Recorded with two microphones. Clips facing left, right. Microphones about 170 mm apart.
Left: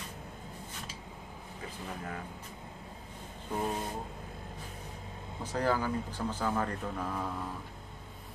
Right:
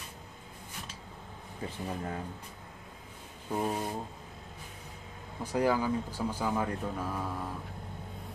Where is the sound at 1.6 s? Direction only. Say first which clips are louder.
Right 5 dB; 30° right (ahead or behind).